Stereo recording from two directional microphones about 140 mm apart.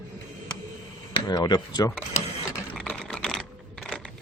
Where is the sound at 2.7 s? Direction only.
5° left (ahead or behind).